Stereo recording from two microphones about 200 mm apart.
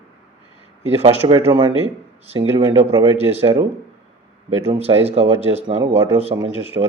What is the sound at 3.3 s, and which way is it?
Speech, 30° right (ahead or behind).